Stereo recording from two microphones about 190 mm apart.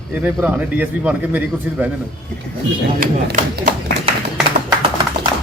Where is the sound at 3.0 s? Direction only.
55° right (ahead or behind).